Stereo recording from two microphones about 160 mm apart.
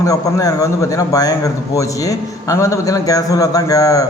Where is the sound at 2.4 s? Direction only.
20° left (ahead or behind).